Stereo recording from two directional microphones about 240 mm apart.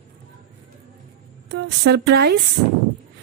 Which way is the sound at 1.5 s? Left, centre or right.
Right.